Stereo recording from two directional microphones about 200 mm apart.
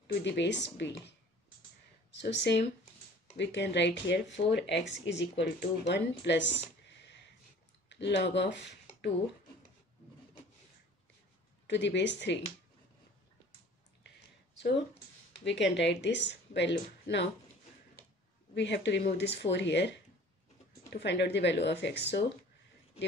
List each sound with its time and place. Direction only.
0.0 s speech: 60° left (ahead or behind)
2.1 s speech: 60° left (ahead or behind)
11.6 s speech: 60° left (ahead or behind)
15.4 s speech: 65° left (ahead or behind)
18.5 s speech: 60° left (ahead or behind)